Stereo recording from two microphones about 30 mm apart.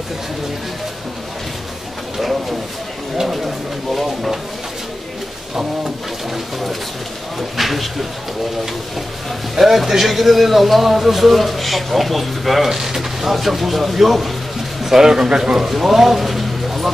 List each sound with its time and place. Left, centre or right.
3.4 s a sound: centre
7.3 s a man's voice: centre
9.6 s a man's voice: centre
15.2 s speech: right
15.7 s speech: centre